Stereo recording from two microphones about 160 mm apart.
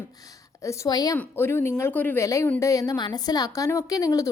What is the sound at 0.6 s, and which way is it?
A woman's voice, 20° left (ahead or behind).